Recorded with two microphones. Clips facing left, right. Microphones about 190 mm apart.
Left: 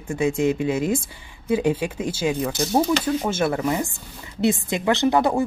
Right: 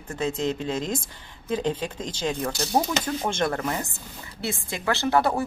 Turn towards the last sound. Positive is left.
turn(degrees=15)  # may be behind; listen again after turning